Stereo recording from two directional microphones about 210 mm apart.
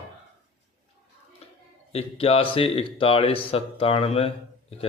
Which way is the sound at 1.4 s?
30° left (ahead or behind).